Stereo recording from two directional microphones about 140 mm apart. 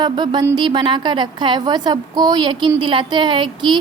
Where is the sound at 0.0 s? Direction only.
30° right (ahead or behind).